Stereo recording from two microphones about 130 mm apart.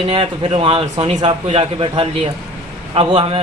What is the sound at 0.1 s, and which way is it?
A man's voice, 45° right (ahead or behind).